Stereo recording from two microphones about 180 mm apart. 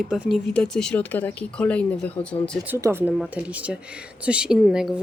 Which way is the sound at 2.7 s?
15° right (ahead or behind).